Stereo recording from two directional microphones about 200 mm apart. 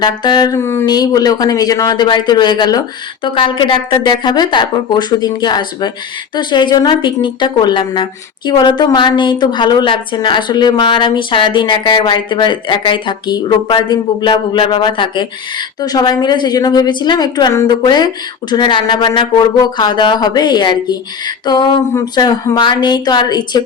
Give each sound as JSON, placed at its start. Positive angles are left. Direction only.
{"t": 0.0, "sound": "a woman's voice", "side_deg": 20}